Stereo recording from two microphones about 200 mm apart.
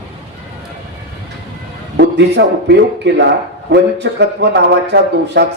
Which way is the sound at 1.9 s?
60° right (ahead or behind).